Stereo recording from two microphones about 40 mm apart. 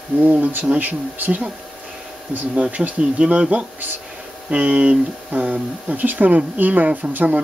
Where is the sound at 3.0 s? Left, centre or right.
Right.